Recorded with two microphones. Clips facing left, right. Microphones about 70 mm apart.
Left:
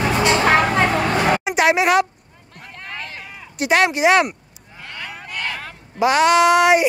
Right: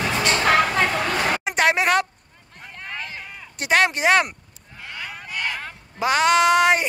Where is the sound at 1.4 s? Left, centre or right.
Centre.